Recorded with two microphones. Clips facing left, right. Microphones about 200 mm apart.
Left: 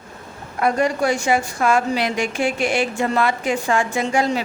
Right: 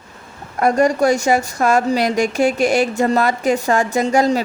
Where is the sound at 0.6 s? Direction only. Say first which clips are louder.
Right 4 dB; 40° right (ahead or behind).